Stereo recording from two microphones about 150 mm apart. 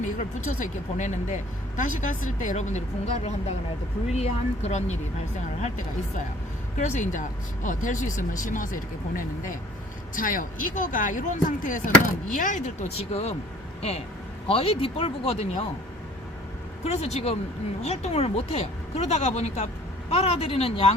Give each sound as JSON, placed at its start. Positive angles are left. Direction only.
{"t": 0.0, "sound": "speech", "side_deg": 55}
{"t": 6.7, "sound": "speech", "side_deg": 55}
{"t": 14.4, "sound": "speech", "side_deg": 40}
{"t": 16.8, "sound": "speech", "side_deg": 45}